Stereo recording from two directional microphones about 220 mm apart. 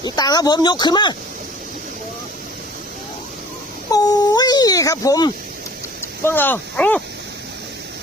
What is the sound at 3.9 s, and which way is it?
Speech, 15° left (ahead or behind).